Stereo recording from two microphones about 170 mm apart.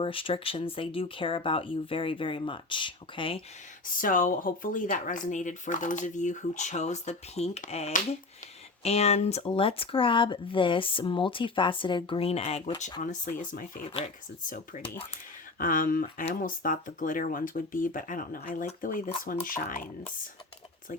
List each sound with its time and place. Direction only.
0.0 s speech: 30° left (ahead or behind)
3.9 s speech: 55° left (ahead or behind); by 13.0 s 30° left (ahead or behind)
13.0 s speech: 45° left (ahead or behind)